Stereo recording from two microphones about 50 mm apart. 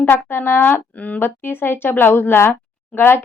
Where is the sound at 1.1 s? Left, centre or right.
Left.